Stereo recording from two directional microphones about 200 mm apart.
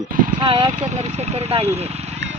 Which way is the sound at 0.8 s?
35° right (ahead or behind).